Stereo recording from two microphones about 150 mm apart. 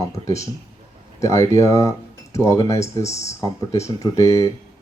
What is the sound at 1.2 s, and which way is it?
Speech, 20° left (ahead or behind).